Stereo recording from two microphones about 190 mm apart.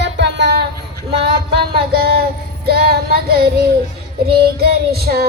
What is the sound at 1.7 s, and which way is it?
Music, 55° right (ahead or behind).